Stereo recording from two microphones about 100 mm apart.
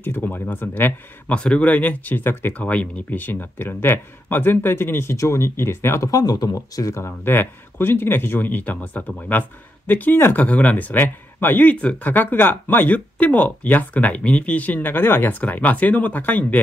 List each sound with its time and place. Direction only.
0.0 s a man's voice: 20° left (ahead or behind)